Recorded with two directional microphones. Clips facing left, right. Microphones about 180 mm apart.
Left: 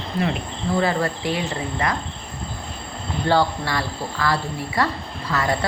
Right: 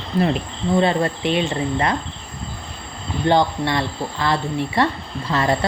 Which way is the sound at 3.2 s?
20° right (ahead or behind).